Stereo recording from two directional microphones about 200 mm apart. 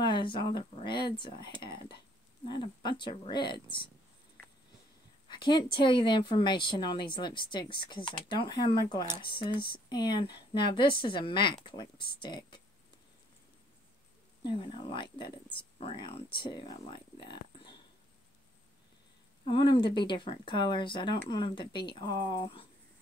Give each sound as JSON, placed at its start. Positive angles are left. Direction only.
{"t": 0.0, "sound": "a woman's voice", "side_deg": 25}
{"t": 5.3, "sound": "a woman's voice", "side_deg": 20}
{"t": 14.4, "sound": "a woman's voice", "side_deg": 25}
{"t": 19.4, "sound": "a woman's voice", "side_deg": 25}